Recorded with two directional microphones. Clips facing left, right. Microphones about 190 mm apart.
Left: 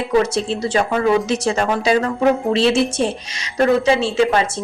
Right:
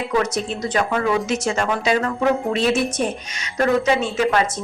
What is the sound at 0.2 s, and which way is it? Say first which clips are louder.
Speech: left 5 dB; 30° left (ahead or behind).